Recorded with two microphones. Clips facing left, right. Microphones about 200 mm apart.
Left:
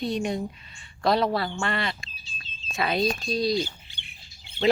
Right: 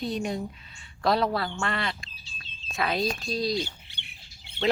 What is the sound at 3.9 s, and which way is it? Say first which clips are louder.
Bird: even; 65° right (ahead or behind).